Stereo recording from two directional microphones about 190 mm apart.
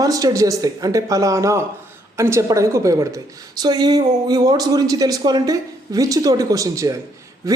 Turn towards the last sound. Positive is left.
turn(degrees=-20)  # may be behind; listen again after turning